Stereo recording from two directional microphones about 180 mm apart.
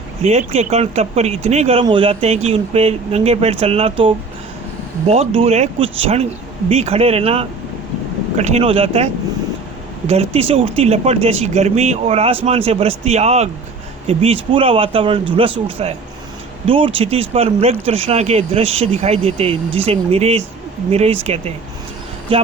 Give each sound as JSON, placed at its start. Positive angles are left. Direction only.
{"t": 0.2, "sound": "speech", "side_deg": -35}
{"t": 10.1, "sound": "speech", "side_deg": -35}